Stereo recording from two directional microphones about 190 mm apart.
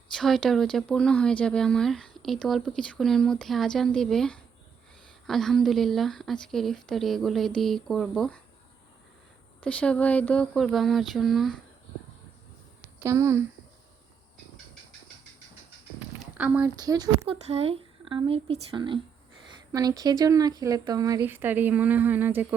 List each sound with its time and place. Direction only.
0.1 s speech: centre (ahead or behind)
9.6 s speech: 5° left (ahead or behind)
13.0 s speech: 15° right (ahead or behind)
16.4 s speech: 5° right (ahead or behind)
16.8 s speech: 20° right (ahead or behind)
17.5 s speech: 30° right (ahead or behind); by 22.5 s 10° right (ahead or behind)